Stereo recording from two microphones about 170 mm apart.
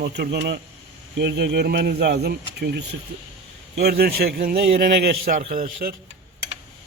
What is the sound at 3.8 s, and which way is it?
A man's voice, 65° right (ahead or behind).